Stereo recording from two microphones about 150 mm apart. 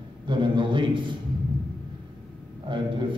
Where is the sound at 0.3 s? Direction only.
35° right (ahead or behind).